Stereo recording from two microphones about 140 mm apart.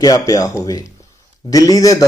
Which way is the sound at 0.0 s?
25° left (ahead or behind).